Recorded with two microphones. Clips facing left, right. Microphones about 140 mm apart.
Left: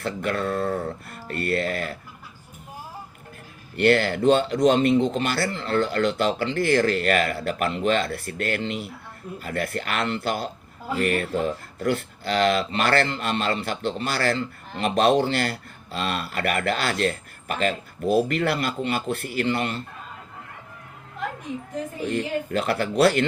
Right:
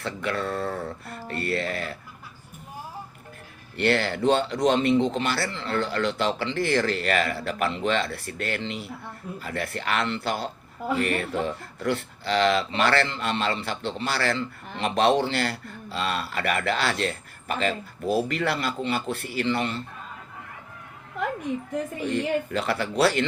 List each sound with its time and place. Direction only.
0.0 s speech: 50° left (ahead or behind)
3.8 s speech: 50° left (ahead or behind)
22.1 s speech: 50° left (ahead or behind)